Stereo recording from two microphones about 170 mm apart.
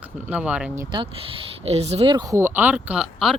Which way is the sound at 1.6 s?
40° right (ahead or behind).